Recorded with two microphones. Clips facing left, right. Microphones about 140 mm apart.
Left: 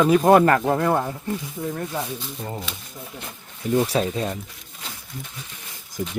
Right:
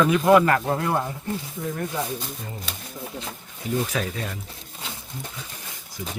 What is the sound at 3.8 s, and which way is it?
Speech, 35° left (ahead or behind).